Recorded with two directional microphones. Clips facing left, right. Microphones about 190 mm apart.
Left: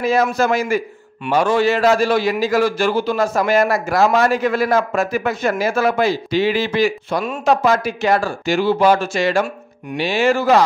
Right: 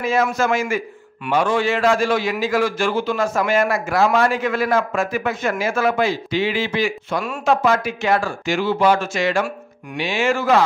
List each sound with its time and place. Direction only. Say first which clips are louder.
0.0 s a man's voice: left 3 dB; 35° left (ahead or behind)